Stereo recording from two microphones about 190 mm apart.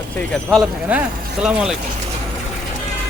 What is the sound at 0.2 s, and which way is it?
Speech, 5° left (ahead or behind).